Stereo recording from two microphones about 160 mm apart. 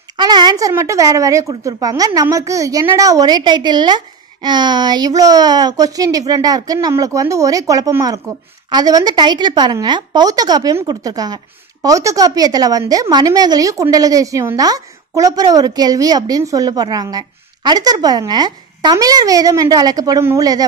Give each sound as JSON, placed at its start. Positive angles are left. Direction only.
{"t": 0.2, "sound": "a woman's voice", "side_deg": -25}